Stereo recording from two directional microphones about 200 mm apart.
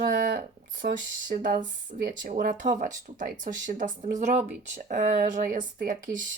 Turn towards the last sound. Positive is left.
turn(degrees=-45)  # may be behind; listen again after turning